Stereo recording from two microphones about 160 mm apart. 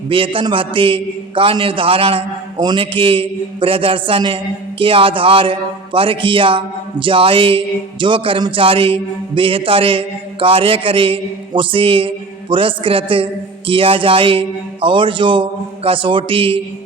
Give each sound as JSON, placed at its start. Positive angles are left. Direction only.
{"t": 0.1, "sound": "a man's voice", "side_deg": -35}